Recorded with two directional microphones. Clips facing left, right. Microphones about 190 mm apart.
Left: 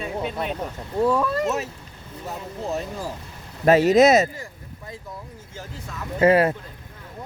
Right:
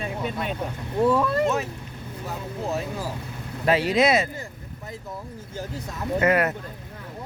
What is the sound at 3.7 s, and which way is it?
Speech, 45° left (ahead or behind).